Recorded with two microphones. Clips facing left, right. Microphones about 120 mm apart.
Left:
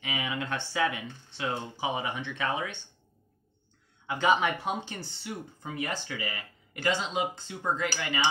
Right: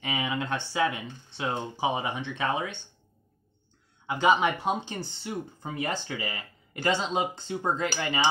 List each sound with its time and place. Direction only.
0.0 s speech: 35° right (ahead or behind)
4.1 s speech: 20° right (ahead or behind)